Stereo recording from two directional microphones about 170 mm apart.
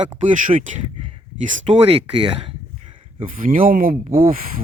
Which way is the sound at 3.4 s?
55° right (ahead or behind).